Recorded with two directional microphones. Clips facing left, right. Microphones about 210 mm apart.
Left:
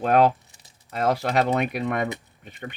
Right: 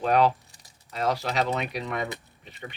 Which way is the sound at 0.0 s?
50° left (ahead or behind).